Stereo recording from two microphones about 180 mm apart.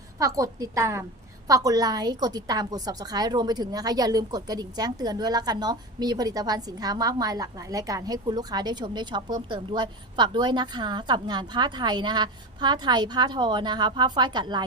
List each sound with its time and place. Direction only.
0.2 s a woman's voice: 20° right (ahead or behind)